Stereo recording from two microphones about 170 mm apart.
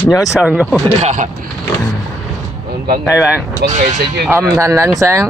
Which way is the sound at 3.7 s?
45° right (ahead or behind).